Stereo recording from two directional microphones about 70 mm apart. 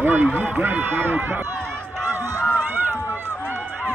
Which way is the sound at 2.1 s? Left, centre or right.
Right.